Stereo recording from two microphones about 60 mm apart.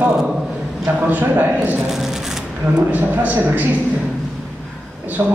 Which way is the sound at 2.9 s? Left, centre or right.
Right.